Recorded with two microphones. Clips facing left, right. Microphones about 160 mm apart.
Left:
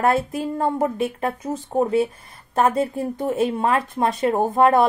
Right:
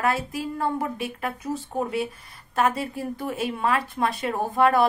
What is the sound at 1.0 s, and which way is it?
Speech, 30° left (ahead or behind).